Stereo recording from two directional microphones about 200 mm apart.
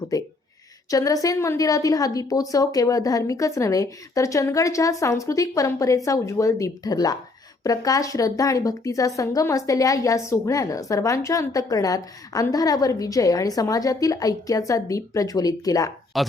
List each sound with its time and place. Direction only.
0.1 s a woman's voice: 15° left (ahead or behind)
16.1 s speech: centre (ahead or behind)